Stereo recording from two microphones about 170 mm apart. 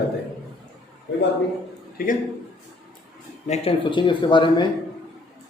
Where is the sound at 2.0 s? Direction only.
55° left (ahead or behind).